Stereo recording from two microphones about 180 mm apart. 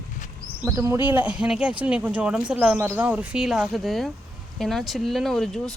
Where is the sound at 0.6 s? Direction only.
15° right (ahead or behind).